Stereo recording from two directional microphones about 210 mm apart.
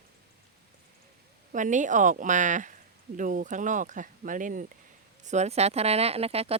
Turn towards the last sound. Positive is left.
turn(degrees=-30)  # may be behind; listen again after turning